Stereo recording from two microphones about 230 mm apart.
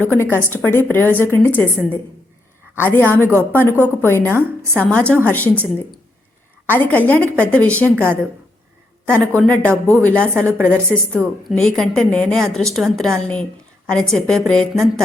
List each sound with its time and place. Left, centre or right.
0.0 s a woman's voice: centre
6.7 s a woman's voice: centre
9.0 s speech: centre